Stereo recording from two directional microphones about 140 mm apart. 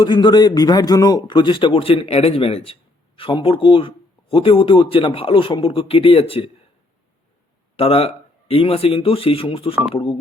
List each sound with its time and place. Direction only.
0.0 s speech: 30° left (ahead or behind)
7.8 s speech: 45° left (ahead or behind)